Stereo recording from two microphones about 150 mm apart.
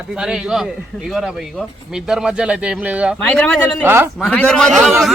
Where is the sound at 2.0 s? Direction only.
5° right (ahead or behind).